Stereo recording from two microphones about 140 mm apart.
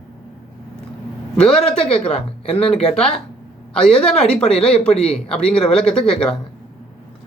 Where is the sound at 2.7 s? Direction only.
5° left (ahead or behind).